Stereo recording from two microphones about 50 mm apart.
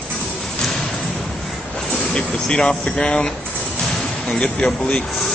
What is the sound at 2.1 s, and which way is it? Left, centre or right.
Speech, centre.